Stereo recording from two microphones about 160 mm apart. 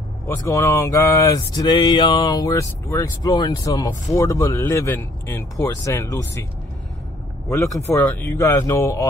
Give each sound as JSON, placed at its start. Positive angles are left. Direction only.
{"t": 0.3, "sound": "speech", "side_deg": 20}
{"t": 7.7, "sound": "speech", "side_deg": 15}